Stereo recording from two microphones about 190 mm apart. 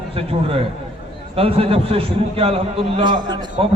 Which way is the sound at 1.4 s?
30° right (ahead or behind).